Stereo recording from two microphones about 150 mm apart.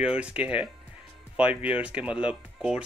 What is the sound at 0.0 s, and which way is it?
Speech, 5° right (ahead or behind).